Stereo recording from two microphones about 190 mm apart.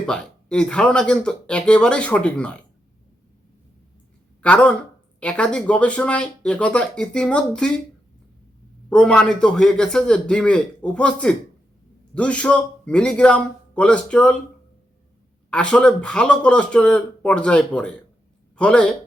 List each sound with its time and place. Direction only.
0.0 s speech: 5° left (ahead or behind)
4.4 s speech: 5° left (ahead or behind)
8.9 s speech: 5° left (ahead or behind)
15.4 s a man's voice: 5° left (ahead or behind)